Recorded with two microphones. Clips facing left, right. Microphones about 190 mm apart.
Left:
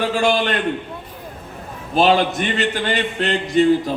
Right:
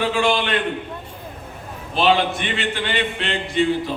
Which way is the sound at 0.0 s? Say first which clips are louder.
Left 2 dB; 45° left (ahead or behind).